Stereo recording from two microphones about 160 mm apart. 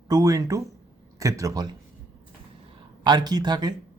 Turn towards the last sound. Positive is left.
turn(degrees=-25)  # may be behind; listen again after turning